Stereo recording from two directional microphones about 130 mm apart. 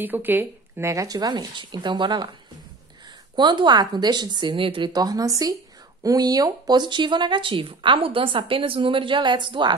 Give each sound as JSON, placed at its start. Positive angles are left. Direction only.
{"t": 0.0, "sound": "speech", "side_deg": -15}
{"t": 3.3, "sound": "speech", "side_deg": -35}